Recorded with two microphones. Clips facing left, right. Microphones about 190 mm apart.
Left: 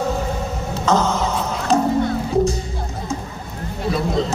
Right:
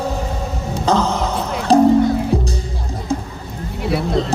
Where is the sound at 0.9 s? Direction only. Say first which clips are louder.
Right 1 dB; 35° right (ahead or behind).